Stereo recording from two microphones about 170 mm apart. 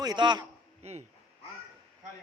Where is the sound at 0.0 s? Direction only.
25° right (ahead or behind).